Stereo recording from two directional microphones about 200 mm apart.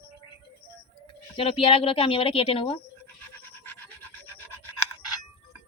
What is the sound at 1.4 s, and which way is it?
Speech, 25° left (ahead or behind).